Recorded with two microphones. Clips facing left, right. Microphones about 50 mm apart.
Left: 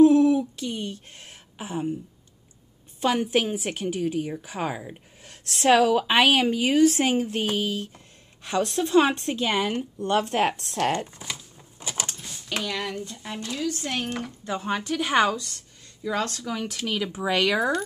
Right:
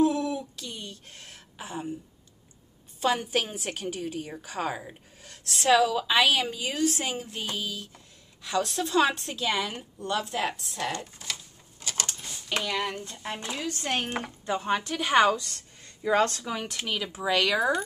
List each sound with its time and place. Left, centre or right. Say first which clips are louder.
0.0 s a sound: left 9 dB; left
3.0 s speech: left 3 dB; centre
5.7 s speech: left 3 dB; left
11.2 s speech: left 2 dB; centre
11.8 s a sound: left 1 dB; centre
12.2 s a sound: even; centre
13.2 s speech: left 3 dB; right
14.4 s a woman's voice: right 1 dB; centre
15.3 s speech: left 1 dB; right
16.8 s a woman's voice: left 5 dB; centre
17.2 s speech: left 1 dB; centre